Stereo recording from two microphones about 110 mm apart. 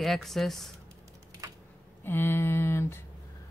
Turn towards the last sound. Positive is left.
turn(degrees=20)  # may be behind; listen again after turning